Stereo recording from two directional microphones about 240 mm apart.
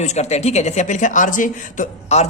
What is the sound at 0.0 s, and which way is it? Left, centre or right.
Speech, left.